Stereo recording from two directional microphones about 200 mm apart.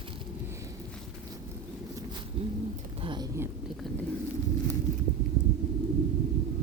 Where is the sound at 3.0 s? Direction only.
20° right (ahead or behind).